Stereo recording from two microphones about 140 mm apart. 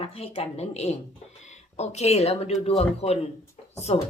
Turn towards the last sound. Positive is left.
turn(degrees=50)  # may be behind; listen again after turning